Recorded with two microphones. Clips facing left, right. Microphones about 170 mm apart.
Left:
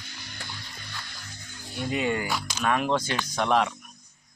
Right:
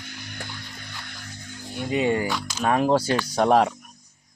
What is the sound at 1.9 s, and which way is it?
Speech, 30° right (ahead or behind).